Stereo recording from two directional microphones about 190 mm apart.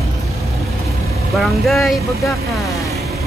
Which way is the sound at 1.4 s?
Centre (ahead or behind).